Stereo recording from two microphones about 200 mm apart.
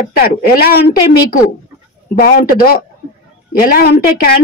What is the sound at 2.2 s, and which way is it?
Speech, 45° left (ahead or behind).